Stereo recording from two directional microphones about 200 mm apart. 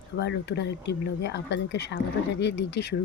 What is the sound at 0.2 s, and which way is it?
Speech, 60° left (ahead or behind).